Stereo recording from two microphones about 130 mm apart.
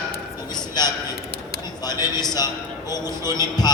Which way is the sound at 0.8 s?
30° left (ahead or behind).